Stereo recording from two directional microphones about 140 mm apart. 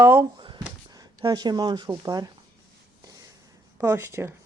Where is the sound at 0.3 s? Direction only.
35° right (ahead or behind).